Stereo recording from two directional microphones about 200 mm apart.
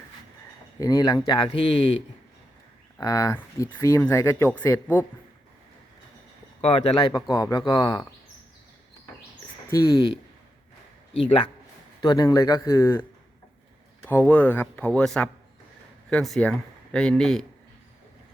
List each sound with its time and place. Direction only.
0.8 s speech: 20° left (ahead or behind)
3.0 s speech: 15° left (ahead or behind)
6.6 s speech: 25° left (ahead or behind)
9.6 s speech: 15° left (ahead or behind)
11.9 s speech: 20° left (ahead or behind); by 17.4 s 5° left (ahead or behind)